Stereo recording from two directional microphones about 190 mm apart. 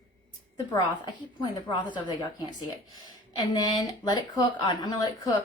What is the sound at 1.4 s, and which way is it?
Speech, 25° left (ahead or behind).